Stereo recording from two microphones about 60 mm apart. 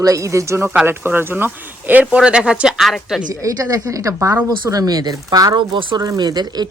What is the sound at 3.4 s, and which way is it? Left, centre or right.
Speech, right.